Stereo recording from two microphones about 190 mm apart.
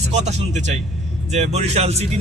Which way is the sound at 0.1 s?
35° right (ahead or behind).